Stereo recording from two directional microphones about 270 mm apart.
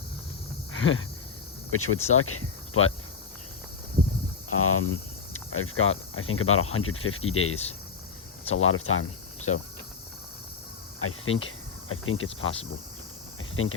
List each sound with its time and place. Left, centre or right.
0.7 s a sound: left
1.7 s speech: left
4.4 s speech: left
11.0 s cricket: left
13.6 s speech: left